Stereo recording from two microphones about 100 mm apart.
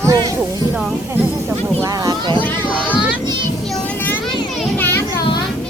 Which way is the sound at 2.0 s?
40° right (ahead or behind).